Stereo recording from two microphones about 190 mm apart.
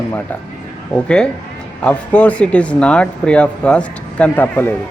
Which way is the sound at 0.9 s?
5° left (ahead or behind).